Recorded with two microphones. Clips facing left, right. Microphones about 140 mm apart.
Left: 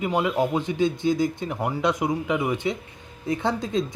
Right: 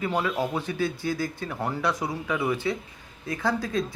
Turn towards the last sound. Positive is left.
turn(degrees=20)  # may be behind; listen again after turning